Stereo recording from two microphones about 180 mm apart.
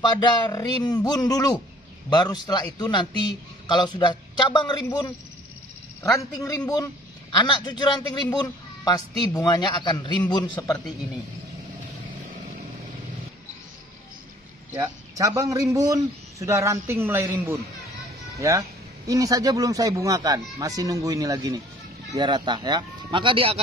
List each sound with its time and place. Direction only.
0.0 s speech: 25° left (ahead or behind)
6.4 s speech: 20° left (ahead or behind)
14.7 s a man's voice: 20° right (ahead or behind)